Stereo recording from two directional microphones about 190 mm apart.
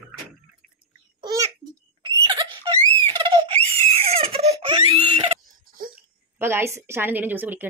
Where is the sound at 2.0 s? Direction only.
25° right (ahead or behind).